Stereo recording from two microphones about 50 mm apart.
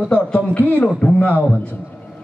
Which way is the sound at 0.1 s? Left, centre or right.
Left.